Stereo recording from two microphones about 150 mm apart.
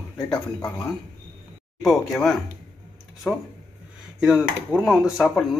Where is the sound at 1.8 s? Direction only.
Centre (ahead or behind).